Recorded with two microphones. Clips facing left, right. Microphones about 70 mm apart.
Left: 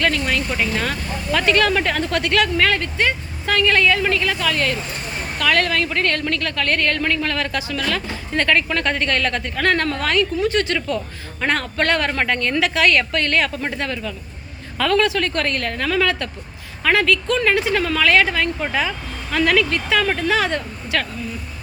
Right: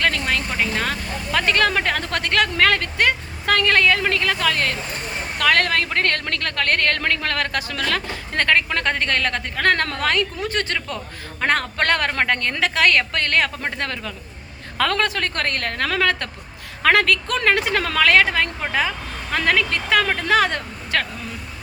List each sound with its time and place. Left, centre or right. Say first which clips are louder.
0.0 s speech: left 1 dB; right
16.8 s speech: even; right